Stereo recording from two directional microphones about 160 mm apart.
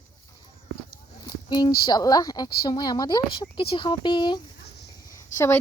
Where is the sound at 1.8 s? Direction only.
25° left (ahead or behind).